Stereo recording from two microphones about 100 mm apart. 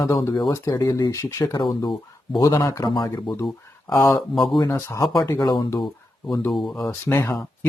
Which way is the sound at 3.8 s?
35° left (ahead or behind).